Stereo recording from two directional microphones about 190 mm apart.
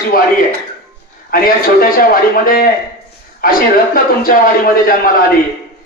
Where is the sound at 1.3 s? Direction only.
50° left (ahead or behind).